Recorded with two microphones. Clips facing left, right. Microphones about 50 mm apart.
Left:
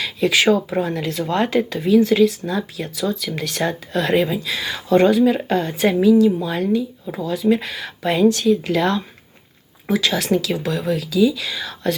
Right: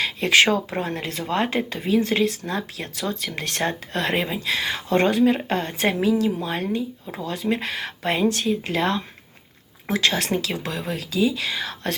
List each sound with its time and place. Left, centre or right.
0.0 s speech: right
4.4 s speech: right
8.1 s speech: right
10.1 s speech: right
10.9 s speech: right